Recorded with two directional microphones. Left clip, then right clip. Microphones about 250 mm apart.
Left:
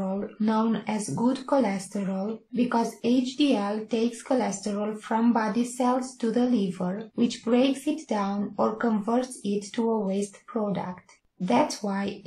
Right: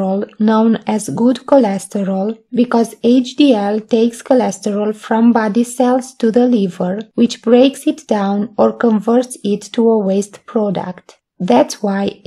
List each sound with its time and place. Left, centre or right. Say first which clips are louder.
0.0 s speech: right 13 dB; right